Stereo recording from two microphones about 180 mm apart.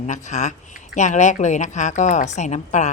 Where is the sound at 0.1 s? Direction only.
40° left (ahead or behind).